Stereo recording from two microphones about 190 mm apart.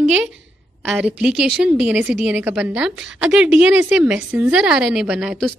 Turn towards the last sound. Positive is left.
turn(degrees=-5)  # may be behind; listen again after turning